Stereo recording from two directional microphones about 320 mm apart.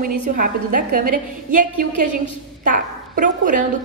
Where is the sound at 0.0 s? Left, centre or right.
Right.